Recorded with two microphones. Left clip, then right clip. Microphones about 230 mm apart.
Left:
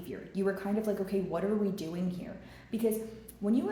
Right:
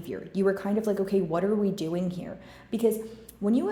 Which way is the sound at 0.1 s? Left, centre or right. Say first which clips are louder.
Right 7 dB; right.